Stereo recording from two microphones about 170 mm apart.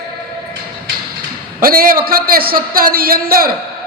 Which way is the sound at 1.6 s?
60° right (ahead or behind).